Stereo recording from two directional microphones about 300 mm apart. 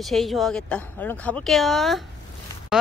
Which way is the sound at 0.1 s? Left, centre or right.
Centre.